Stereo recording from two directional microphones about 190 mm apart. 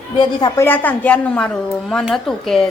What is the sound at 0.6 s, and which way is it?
Speech, 10° left (ahead or behind).